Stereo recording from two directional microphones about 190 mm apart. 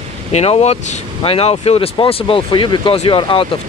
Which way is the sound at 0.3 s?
35° left (ahead or behind).